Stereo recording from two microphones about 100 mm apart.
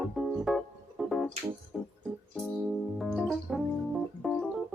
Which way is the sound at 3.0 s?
5° left (ahead or behind).